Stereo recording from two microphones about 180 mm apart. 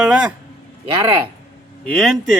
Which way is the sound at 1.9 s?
5° left (ahead or behind).